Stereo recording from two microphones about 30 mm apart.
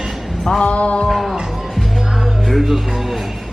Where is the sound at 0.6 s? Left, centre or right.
Left.